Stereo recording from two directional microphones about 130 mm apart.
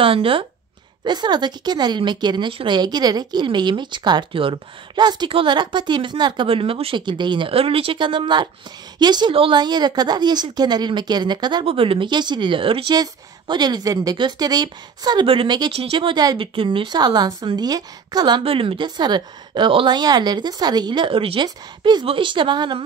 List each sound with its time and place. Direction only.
0.0 s a woman's voice: 45° right (ahead or behind)